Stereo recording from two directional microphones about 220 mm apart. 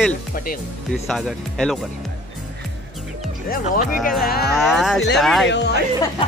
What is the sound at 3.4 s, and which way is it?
Speech, 40° left (ahead or behind).